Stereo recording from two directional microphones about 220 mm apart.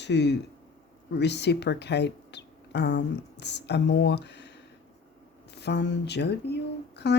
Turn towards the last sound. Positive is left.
turn(degrees=50)  # may be behind; listen again after turning